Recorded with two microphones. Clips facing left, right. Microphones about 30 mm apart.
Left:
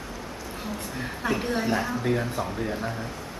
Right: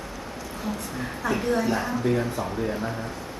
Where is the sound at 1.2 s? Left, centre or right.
Left.